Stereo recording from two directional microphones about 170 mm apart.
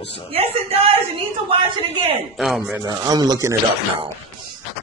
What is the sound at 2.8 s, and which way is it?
Speech, 25° right (ahead or behind).